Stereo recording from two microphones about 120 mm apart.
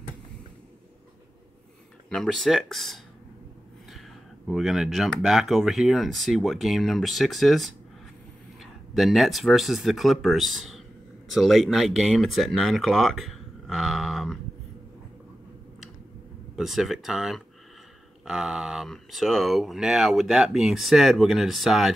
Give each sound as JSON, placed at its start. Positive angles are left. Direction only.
{"t": 2.0, "sound": "speech", "side_deg": 5}
{"t": 4.5, "sound": "speech", "side_deg": 0}
{"t": 8.9, "sound": "speech", "side_deg": 0}
{"t": 16.5, "sound": "speech", "side_deg": 0}